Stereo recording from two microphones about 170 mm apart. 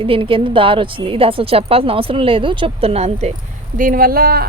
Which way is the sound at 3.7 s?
55° right (ahead or behind).